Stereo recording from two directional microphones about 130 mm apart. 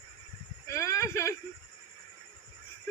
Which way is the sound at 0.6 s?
25° left (ahead or behind).